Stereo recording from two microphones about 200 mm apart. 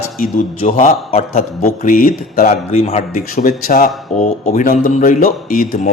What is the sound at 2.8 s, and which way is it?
A man's voice, 35° left (ahead or behind).